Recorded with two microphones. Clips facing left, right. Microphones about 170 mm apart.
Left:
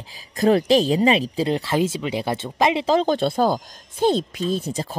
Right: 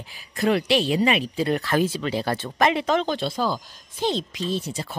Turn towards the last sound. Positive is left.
turn(degrees=40)  # may be behind; listen again after turning